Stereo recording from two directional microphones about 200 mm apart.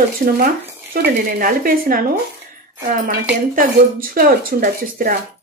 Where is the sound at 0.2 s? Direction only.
45° right (ahead or behind).